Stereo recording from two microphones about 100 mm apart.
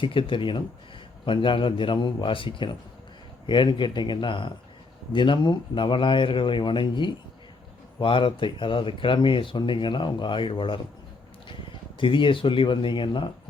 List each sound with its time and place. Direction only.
0.0 s a man's voice: 60° left (ahead or behind)